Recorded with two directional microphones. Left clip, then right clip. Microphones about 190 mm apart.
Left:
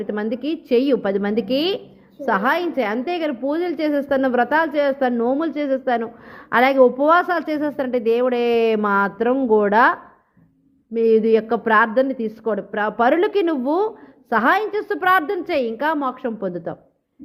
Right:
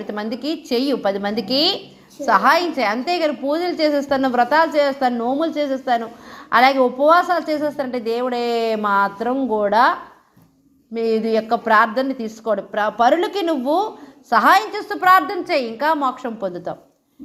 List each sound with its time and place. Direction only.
0.1 s a woman's voice: 45° left (ahead or behind)